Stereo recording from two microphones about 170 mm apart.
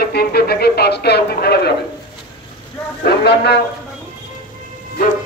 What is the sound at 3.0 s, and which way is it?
Speech, 70° left (ahead or behind).